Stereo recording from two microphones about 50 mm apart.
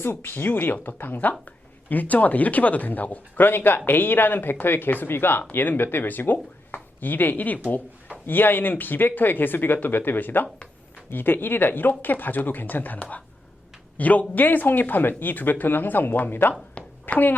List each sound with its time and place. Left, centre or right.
0.0 s speech: left